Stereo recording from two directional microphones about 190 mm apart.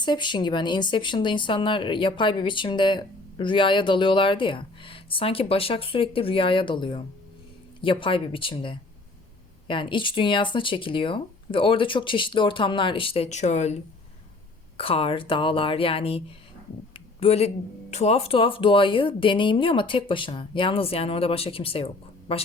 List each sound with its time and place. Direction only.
0.0 s speech: 25° left (ahead or behind)
14.8 s speech: 30° left (ahead or behind)
16.9 s a sound: 30° left (ahead or behind)
17.9 s speech: 35° left (ahead or behind)